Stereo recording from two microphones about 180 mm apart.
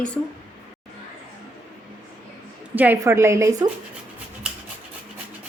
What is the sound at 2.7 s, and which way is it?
Speech, 10° right (ahead or behind).